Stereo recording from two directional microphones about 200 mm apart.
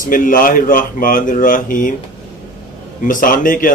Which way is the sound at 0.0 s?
45° left (ahead or behind).